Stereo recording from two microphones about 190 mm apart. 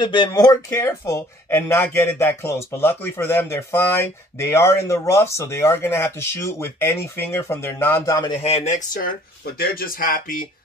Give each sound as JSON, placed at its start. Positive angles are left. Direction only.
{"t": 0.0, "sound": "speech", "side_deg": 25}
{"t": 8.4, "sound": "speech", "side_deg": 35}